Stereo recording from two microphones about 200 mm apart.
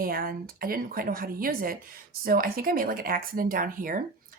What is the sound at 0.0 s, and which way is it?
Speech, 45° right (ahead or behind).